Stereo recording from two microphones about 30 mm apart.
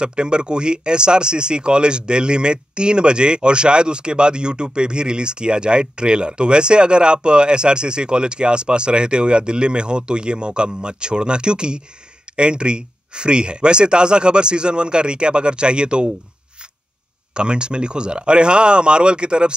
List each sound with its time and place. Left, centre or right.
0.0 s speech: right
17.3 s speech: right